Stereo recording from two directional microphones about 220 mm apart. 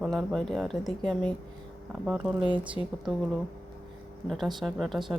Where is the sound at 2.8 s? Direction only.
20° right (ahead or behind).